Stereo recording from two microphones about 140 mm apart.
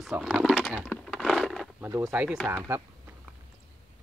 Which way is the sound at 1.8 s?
15° right (ahead or behind).